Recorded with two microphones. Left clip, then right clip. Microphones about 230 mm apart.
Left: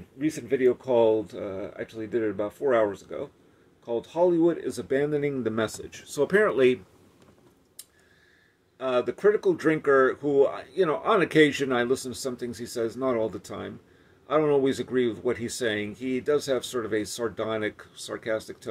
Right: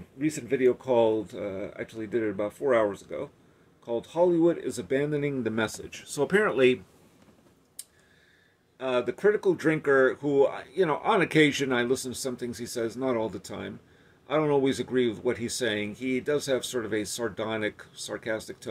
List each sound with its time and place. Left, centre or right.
0.2 s speech: centre
8.7 s speech: centre